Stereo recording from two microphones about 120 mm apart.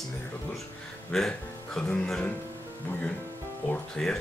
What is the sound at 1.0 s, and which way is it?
Speech, 5° left (ahead or behind).